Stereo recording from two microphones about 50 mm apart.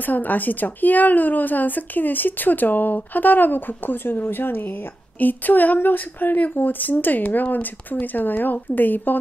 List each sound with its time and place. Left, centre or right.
0.0 s speech: left